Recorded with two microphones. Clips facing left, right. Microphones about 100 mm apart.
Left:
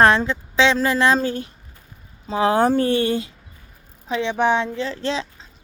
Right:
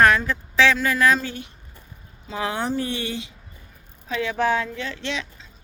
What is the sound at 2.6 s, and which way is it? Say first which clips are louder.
Speech: left 9 dB; 55° left (ahead or behind).